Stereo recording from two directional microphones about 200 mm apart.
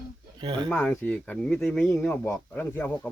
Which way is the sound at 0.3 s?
25° right (ahead or behind).